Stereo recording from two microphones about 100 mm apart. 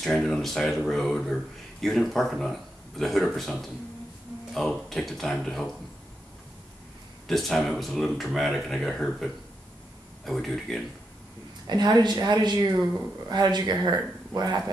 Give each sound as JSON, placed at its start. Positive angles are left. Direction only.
{"t": 0.0, "sound": "speech", "side_deg": 5}
{"t": 7.2, "sound": "speech", "side_deg": 0}
{"t": 11.6, "sound": "a woman's voice", "side_deg": -45}